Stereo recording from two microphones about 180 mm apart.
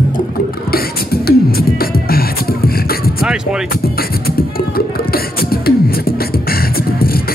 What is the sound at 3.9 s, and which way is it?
Beatboxing, 55° left (ahead or behind).